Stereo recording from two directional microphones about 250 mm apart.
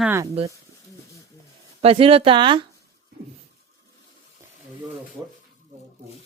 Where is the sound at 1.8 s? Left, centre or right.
Right.